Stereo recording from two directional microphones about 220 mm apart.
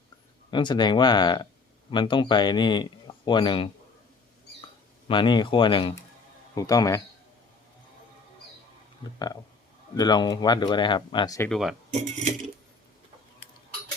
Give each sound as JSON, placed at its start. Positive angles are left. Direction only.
{"t": 0.5, "sound": "speech", "side_deg": 20}
{"t": 5.0, "sound": "speech", "side_deg": 20}
{"t": 9.1, "sound": "speech", "side_deg": 20}
{"t": 11.4, "sound": "speech", "side_deg": 0}
{"t": 11.9, "sound": "speech", "side_deg": -30}